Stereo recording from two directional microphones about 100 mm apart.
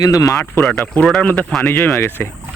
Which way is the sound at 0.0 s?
35° left (ahead or behind).